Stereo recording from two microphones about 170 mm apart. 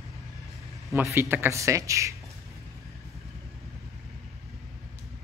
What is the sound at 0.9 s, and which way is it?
A man's voice, 15° right (ahead or behind).